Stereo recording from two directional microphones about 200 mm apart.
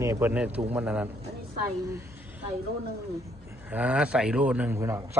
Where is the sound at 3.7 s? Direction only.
5° right (ahead or behind).